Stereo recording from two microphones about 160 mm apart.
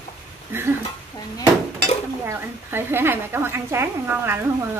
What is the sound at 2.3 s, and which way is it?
A woman's voice, 15° right (ahead or behind).